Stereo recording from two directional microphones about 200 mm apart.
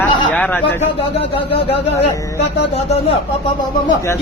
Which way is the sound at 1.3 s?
30° left (ahead or behind).